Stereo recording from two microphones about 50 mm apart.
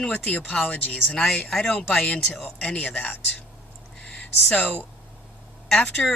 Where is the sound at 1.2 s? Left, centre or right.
Centre.